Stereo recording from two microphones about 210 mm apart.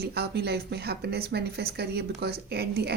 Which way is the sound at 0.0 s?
50° right (ahead or behind).